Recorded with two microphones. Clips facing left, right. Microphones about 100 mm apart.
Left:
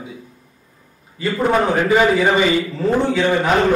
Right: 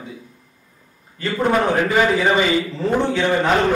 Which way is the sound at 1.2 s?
5° left (ahead or behind).